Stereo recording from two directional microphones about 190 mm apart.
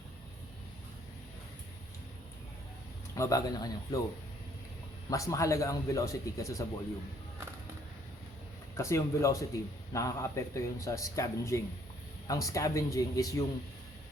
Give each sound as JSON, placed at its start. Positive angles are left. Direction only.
{"t": 3.2, "sound": "speech", "side_deg": 15}
{"t": 5.0, "sound": "speech", "side_deg": 15}
{"t": 8.7, "sound": "speech", "side_deg": 15}